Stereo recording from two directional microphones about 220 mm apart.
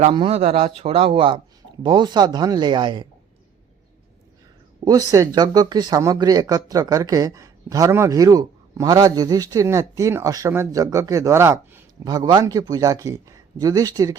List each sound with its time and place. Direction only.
0.0 s a man's voice: 25° right (ahead or behind)
4.9 s speech: 15° right (ahead or behind)